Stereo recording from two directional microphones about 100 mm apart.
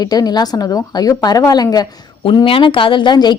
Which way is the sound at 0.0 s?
40° left (ahead or behind).